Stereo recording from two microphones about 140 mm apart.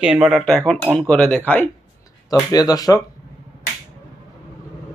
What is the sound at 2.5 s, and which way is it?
Speech, 25° left (ahead or behind).